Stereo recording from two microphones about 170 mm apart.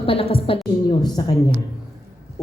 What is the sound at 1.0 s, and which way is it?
Speech, 20° left (ahead or behind).